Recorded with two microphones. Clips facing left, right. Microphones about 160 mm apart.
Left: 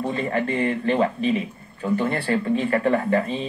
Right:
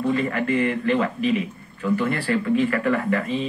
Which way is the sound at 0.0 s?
30° left (ahead or behind).